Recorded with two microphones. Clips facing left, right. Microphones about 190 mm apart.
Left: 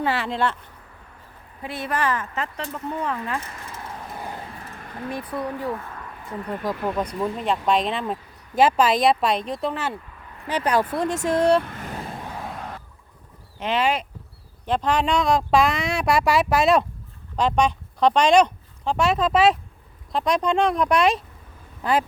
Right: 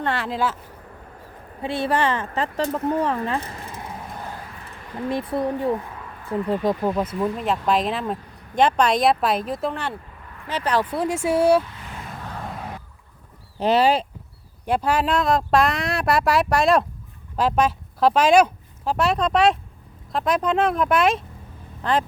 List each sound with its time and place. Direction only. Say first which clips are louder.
0.0 s speech: even; centre (ahead or behind)
1.6 s speech: right 4 dB; 30° right (ahead or behind)
5.0 s speech: right 5 dB; 25° right (ahead or behind)
6.8 s speech: right 2 dB; 5° right (ahead or behind)
10.4 s speech: left 1 dB; 15° left (ahead or behind)
10.9 s speech: right 1 dB; 10° right (ahead or behind)
11.6 s vehicle: left 5 dB; 50° left (ahead or behind)
12.2 s a sound: even; 5° left (ahead or behind)
13.6 s speech: right 5 dB; 35° right (ahead or behind)
14.6 s speech: right 1 dB; 10° right (ahead or behind)
21.8 s speech: even; 10° left (ahead or behind)